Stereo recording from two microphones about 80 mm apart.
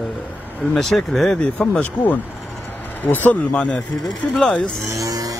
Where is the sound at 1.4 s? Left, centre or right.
Centre.